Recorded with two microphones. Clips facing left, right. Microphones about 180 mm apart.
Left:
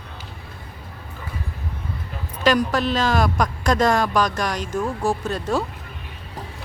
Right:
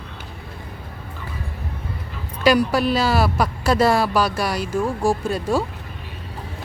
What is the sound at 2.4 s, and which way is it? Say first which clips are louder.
A man's voice: right 2 dB; 10° right (ahead or behind).